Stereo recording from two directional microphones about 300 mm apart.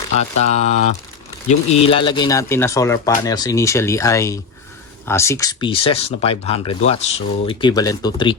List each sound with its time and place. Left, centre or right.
0.2 s speech: left